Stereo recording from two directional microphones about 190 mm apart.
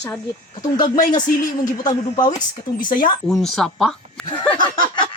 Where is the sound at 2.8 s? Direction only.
45° left (ahead or behind).